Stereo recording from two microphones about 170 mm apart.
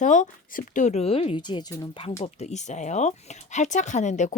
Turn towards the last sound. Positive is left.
turn(degrees=45)  # may be behind; listen again after turning